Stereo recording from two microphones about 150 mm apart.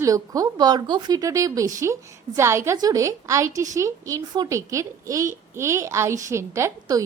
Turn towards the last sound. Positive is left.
turn(degrees=-20)  # may be behind; listen again after turning